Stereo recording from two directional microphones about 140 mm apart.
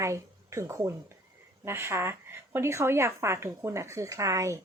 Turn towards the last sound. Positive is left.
turn(degrees=-20)  # may be behind; listen again after turning